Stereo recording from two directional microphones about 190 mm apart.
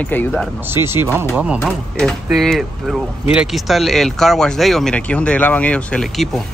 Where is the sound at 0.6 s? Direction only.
10° right (ahead or behind).